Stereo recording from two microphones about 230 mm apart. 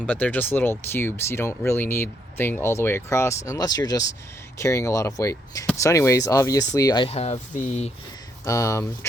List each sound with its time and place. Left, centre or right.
0.0 s speech: centre; by 7.9 s left
8.4 s speech: centre